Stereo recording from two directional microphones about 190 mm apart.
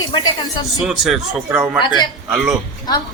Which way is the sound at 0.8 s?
Centre (ahead or behind).